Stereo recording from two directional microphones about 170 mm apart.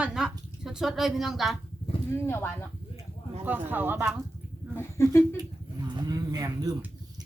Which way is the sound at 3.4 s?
10° right (ahead or behind).